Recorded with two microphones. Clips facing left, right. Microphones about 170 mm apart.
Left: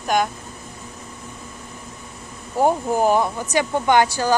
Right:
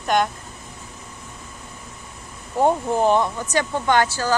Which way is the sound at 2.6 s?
5° left (ahead or behind).